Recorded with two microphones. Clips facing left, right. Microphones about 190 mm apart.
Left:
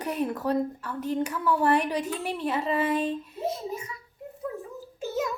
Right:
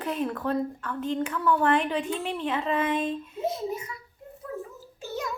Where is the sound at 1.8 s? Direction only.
40° left (ahead or behind).